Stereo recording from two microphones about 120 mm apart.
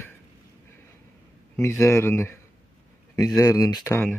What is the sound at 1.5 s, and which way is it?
Speech, 25° left (ahead or behind).